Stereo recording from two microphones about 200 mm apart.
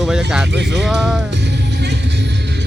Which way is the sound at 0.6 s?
60° right (ahead or behind).